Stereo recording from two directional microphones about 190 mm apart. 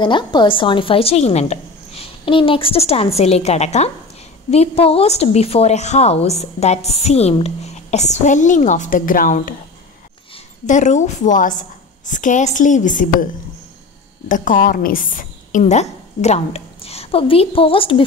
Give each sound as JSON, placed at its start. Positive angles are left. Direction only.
{"t": 0.0, "sound": "a woman's voice", "side_deg": 25}
{"t": 14.3, "sound": "a woman's voice", "side_deg": 45}